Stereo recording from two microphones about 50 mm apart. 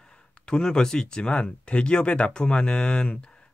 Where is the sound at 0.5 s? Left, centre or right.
Centre.